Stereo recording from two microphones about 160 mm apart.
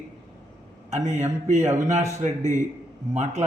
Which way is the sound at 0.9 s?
50° right (ahead or behind).